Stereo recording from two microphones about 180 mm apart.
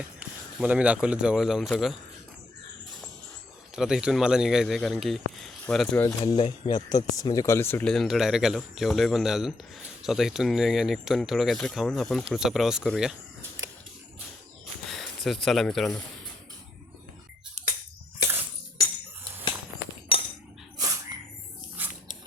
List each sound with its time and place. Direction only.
0.2 s speech: 5° right (ahead or behind)
3.8 s speech: 5° right (ahead or behind)
5.4 s a sound: centre (ahead or behind)
6.0 s speech: 15° left (ahead or behind)
6.3 s speech: 25° left (ahead or behind); by 13.1 s centre (ahead or behind)
14.8 s speech: centre (ahead or behind)
20.1 s chink: 30° left (ahead or behind)
20.7 s a sound: 20° right (ahead or behind)